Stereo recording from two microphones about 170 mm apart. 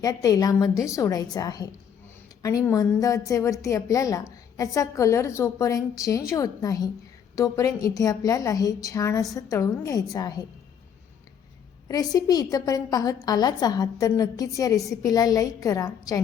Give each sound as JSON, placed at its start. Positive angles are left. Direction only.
{"t": 0.0, "sound": "a woman's voice", "side_deg": 20}
{"t": 11.9, "sound": "a woman's voice", "side_deg": 20}